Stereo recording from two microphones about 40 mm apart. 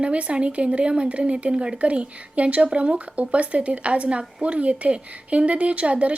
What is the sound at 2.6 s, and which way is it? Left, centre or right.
Speech, right.